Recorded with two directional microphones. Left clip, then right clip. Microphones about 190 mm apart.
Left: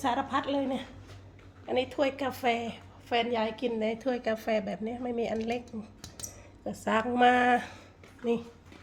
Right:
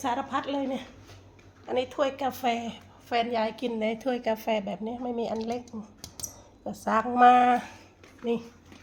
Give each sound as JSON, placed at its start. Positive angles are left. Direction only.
{"t": 0.0, "sound": "a woman's voice", "side_deg": 0}
{"t": 6.7, "sound": "a woman's voice", "side_deg": 5}